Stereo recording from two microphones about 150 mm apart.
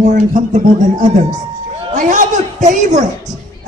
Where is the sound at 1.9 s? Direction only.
55° right (ahead or behind).